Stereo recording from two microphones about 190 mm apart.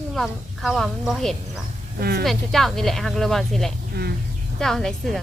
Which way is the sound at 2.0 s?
55° right (ahead or behind).